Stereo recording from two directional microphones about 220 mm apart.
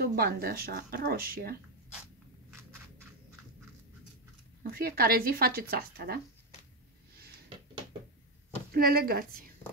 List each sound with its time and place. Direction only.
0.0 s speech: 45° right (ahead or behind)
4.7 s speech: 45° right (ahead or behind)
8.7 s speech: 40° right (ahead or behind)